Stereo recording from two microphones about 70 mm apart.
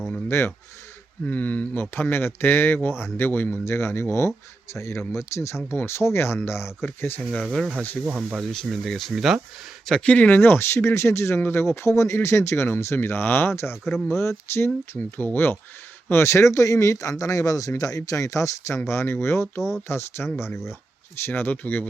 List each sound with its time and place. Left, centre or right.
0.3 s speech: left
1.3 s speech: left
3.6 s speech: left
8.0 s speech: centre
8.4 s speech: centre
10.0 s speech: left
11.3 s speech: left
11.6 s speech: left
14.9 s speech: left
18.9 s speech: left